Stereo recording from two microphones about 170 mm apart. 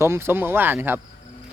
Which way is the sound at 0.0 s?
15° right (ahead or behind).